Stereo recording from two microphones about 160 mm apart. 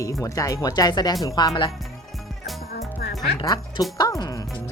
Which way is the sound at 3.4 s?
25° left (ahead or behind).